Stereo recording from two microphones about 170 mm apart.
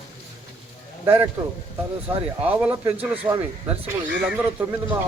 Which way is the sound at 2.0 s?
10° right (ahead or behind).